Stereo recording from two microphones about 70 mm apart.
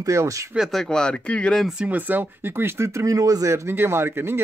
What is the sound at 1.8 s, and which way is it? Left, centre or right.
Speech, right.